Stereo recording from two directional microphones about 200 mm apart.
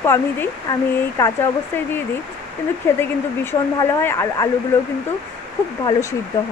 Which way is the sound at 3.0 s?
10° left (ahead or behind).